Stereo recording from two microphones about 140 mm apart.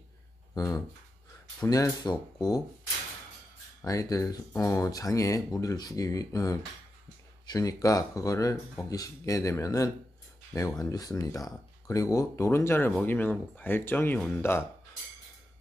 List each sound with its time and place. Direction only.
0.6 s speech: 25° left (ahead or behind)
3.8 s speech: 25° left (ahead or behind)